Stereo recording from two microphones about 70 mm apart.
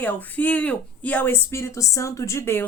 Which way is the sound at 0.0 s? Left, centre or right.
Left.